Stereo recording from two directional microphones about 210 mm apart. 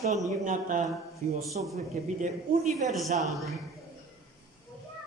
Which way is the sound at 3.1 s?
Centre (ahead or behind).